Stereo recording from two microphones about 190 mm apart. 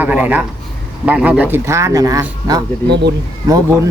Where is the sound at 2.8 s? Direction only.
60° right (ahead or behind).